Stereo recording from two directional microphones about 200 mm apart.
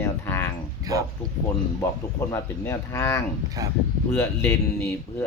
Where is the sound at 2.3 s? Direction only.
15° left (ahead or behind).